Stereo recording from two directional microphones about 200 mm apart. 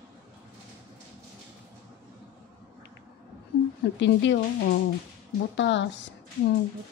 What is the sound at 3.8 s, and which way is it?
Speech, 60° left (ahead or behind).